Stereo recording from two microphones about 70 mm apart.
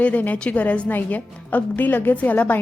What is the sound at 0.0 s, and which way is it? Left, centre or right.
Speech, left.